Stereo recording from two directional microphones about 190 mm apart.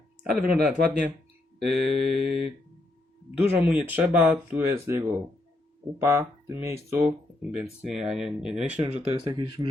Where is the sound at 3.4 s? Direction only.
10° right (ahead or behind).